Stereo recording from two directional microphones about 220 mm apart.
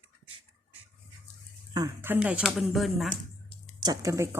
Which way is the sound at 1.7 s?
15° right (ahead or behind).